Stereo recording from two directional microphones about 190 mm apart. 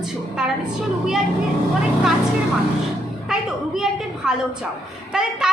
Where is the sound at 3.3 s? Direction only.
Centre (ahead or behind).